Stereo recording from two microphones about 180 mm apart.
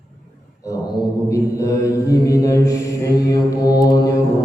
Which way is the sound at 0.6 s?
20° left (ahead or behind).